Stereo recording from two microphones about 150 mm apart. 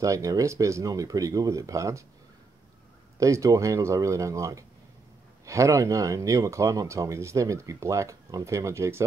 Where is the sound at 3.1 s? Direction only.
20° right (ahead or behind).